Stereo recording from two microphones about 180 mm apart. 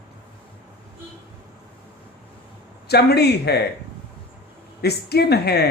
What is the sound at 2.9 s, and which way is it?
Speech, 65° left (ahead or behind).